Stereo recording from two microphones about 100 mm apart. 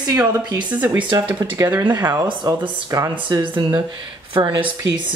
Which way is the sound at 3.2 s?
55° right (ahead or behind).